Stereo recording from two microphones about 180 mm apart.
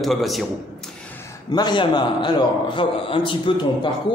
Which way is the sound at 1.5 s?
25° left (ahead or behind).